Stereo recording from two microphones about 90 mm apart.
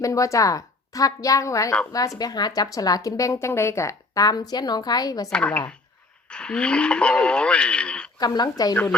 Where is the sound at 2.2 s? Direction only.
50° left (ahead or behind).